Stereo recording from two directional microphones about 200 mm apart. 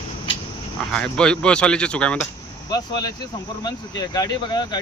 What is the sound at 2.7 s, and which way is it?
Speech, 20° left (ahead or behind).